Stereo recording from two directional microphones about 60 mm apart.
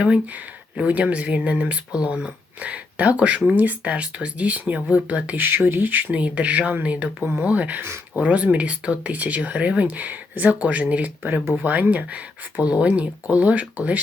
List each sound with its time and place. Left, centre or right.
0.8 s speech: right
5.5 s speech: right